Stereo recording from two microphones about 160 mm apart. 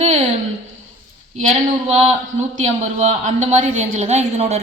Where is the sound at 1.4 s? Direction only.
45° right (ahead or behind).